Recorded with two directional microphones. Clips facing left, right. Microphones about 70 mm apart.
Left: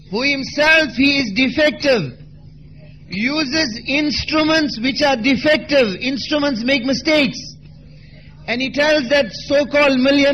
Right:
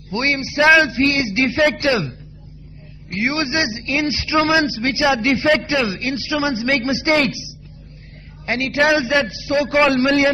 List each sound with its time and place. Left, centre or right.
0.1 s a man's voice: right
3.8 s a man's voice: centre